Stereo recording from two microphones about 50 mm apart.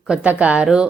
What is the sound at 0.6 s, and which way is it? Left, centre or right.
Speech, centre.